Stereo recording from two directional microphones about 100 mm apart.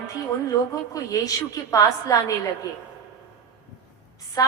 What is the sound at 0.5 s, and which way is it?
A woman's voice, 35° left (ahead or behind).